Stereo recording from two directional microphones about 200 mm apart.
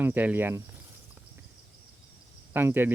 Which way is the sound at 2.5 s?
10° right (ahead or behind).